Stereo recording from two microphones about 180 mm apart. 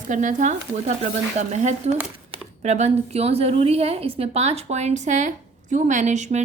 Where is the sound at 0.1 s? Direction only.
45° right (ahead or behind).